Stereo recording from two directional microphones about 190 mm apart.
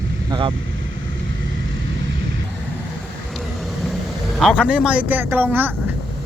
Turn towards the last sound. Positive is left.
turn(degrees=-10)  # may be behind; listen again after turning